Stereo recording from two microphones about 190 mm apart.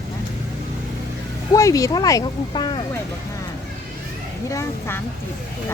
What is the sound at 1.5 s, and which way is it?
Speech, 15° left (ahead or behind).